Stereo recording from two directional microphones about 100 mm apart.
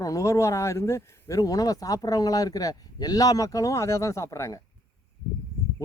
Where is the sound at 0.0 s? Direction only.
35° left (ahead or behind).